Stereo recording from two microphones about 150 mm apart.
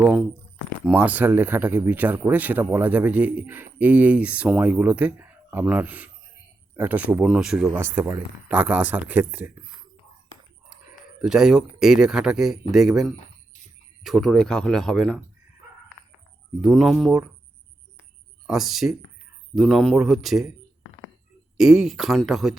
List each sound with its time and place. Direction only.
0.0 s speech: 5° right (ahead or behind)
11.2 s speech: 5° right (ahead or behind)
16.6 s speech: centre (ahead or behind)
18.4 s speech: centre (ahead or behind)
21.6 s speech: 5° right (ahead or behind)